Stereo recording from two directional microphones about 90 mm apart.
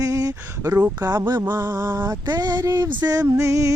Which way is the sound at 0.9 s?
45° right (ahead or behind).